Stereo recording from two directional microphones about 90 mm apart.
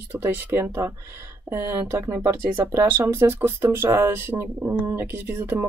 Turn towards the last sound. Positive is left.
turn(degrees=-25)  # may be behind; listen again after turning